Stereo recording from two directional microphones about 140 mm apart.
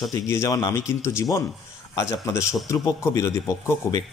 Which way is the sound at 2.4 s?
5° right (ahead or behind).